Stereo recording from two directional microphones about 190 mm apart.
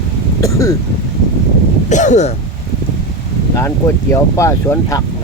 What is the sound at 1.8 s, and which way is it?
Speech, 40° left (ahead or behind).